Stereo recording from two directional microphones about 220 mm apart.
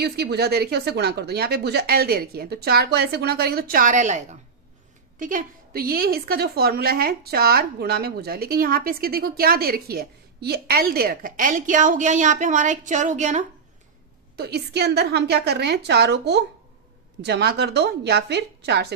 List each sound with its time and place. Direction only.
0.0 s a woman's voice: 45° right (ahead or behind)
14.3 s a woman's voice: 45° right (ahead or behind)